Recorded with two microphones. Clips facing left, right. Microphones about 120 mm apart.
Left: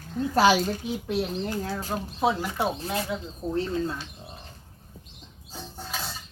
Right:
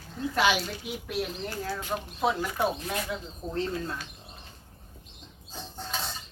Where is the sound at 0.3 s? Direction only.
40° left (ahead or behind).